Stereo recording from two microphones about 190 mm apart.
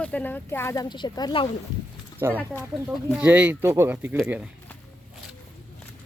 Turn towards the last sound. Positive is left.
turn(degrees=-10)  # may be behind; listen again after turning